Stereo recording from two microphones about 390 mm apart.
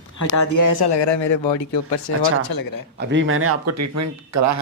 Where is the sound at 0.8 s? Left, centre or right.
Left.